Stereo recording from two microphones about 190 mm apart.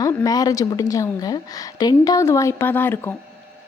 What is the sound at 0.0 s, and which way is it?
A woman's voice, 20° left (ahead or behind).